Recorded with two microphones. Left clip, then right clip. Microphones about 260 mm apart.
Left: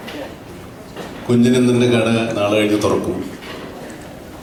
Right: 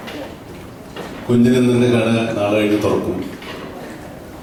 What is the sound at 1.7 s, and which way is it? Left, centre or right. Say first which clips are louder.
A man's voice: even; centre.